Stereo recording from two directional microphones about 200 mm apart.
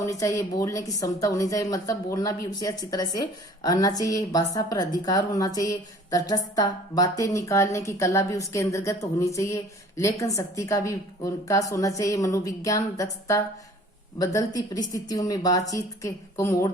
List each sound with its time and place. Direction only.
0.0 s a woman's voice: 15° left (ahead or behind)